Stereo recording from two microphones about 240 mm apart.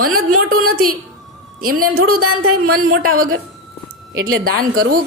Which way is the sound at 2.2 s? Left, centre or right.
Right.